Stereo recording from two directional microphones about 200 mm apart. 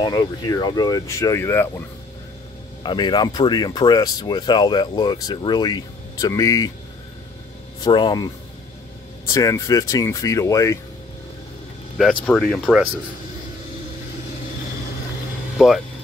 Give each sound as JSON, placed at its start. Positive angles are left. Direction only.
{"t": 0.0, "sound": "speech", "side_deg": 20}
{"t": 2.8, "sound": "speech", "side_deg": 20}
{"t": 7.8, "sound": "speech", "side_deg": 20}
{"t": 9.3, "sound": "speech", "side_deg": 15}
{"t": 12.0, "sound": "speech", "side_deg": 5}
{"t": 15.5, "sound": "speech", "side_deg": 0}